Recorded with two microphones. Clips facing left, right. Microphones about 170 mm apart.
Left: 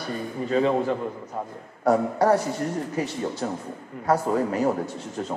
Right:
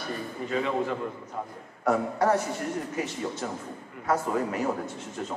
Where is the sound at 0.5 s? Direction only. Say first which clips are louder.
Left 6 dB; 35° left (ahead or behind).